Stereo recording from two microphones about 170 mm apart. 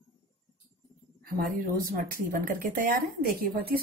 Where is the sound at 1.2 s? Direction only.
60° right (ahead or behind).